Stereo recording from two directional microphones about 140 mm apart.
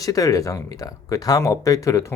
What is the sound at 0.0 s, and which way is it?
Speech, 25° left (ahead or behind).